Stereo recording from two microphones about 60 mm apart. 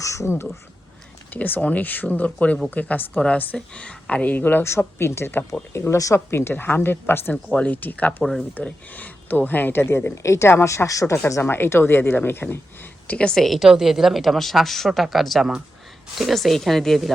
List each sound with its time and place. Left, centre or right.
0.0 s speech: left
1.3 s speech: left
4.6 s a woman's voice: left
7.5 s speech: left
8.2 s a woman's voice: centre
8.5 s speech: left
11.4 s speech: left
13.1 s a woman's voice: centre
13.3 s a woman's voice: centre